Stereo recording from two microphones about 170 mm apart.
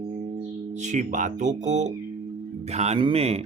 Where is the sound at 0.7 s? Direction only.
45° right (ahead or behind).